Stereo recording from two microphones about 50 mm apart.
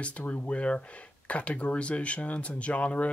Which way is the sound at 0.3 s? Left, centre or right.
Left.